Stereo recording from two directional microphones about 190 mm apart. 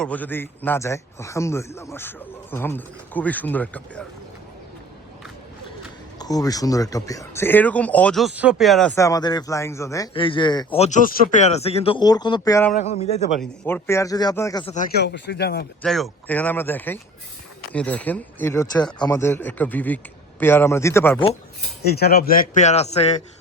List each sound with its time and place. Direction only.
0.0 s a man's voice: 10° left (ahead or behind)
6.1 s a man's voice: 20° left (ahead or behind); by 8.9 s centre (ahead or behind)
9.0 s a man's voice: 20° left (ahead or behind)
10.8 s speech: 40° left (ahead or behind); by 12.6 s 20° left (ahead or behind)
12.7 s speech: 35° left (ahead or behind)
13.7 s a man's voice: 10° left (ahead or behind)
14.6 s speech: 35° left (ahead or behind)
14.9 s speech: 65° left (ahead or behind)
15.8 s a man's voice: 5° left (ahead or behind)
21.9 s speech: 55° left (ahead or behind); by 23.1 s 35° left (ahead or behind)